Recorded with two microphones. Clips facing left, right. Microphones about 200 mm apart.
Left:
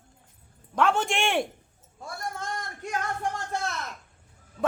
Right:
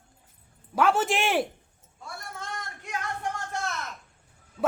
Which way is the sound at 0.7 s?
5° right (ahead or behind).